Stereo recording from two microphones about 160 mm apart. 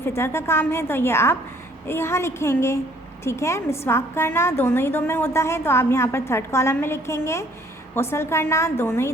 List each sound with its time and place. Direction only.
0.0 s a woman's voice: 15° left (ahead or behind)